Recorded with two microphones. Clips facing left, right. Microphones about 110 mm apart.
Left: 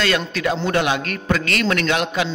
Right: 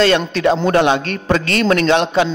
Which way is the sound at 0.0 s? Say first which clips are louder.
Right 7 dB; 30° right (ahead or behind).